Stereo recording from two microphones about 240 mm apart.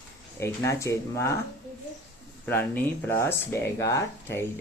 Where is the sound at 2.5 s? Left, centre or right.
Centre.